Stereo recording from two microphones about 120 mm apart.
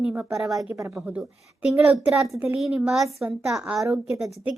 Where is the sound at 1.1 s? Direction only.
10° right (ahead or behind).